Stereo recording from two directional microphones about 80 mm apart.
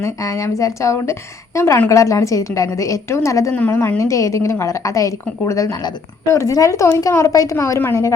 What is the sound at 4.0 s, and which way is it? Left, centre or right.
A woman's voice, left.